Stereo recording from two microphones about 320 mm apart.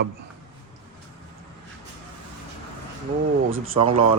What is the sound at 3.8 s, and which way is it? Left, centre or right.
Speech, centre.